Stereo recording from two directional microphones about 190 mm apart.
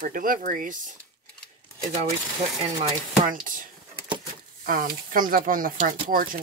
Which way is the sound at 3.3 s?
45° right (ahead or behind).